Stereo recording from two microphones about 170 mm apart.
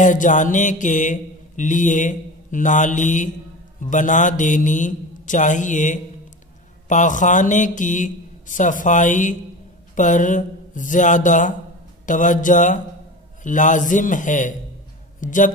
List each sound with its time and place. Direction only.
0.0 s mantra: 50° left (ahead or behind)
15.1 s speech: 50° left (ahead or behind)